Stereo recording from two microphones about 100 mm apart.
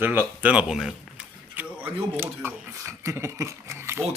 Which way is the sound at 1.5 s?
20° right (ahead or behind).